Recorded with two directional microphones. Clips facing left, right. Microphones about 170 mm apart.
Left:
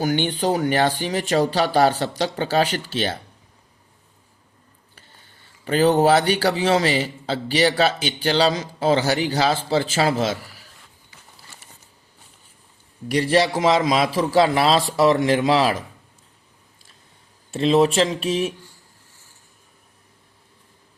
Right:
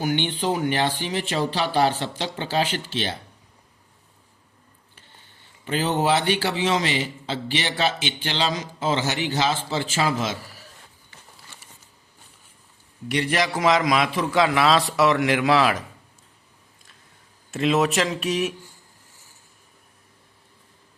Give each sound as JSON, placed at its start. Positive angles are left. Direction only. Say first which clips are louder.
{"t": 0.0, "sound": "speech", "louder": "left 3 dB", "side_deg": 40}
{"t": 5.6, "sound": "a man's voice", "louder": "left 6 dB", "side_deg": 45}
{"t": 13.1, "sound": "a man's voice", "louder": "left 5 dB", "side_deg": 35}
{"t": 17.5, "sound": "speech", "louder": "left 4 dB", "side_deg": 30}